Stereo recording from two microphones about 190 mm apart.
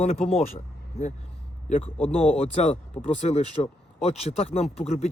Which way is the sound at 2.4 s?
35° left (ahead or behind).